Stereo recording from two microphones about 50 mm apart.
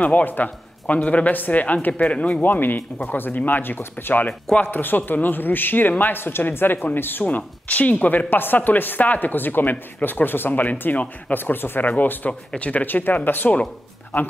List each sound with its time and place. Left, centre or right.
0.0 s speech: left
2.4 s speech: left
7.2 s speech: left
8.3 s speech: left
12.3 s speech: left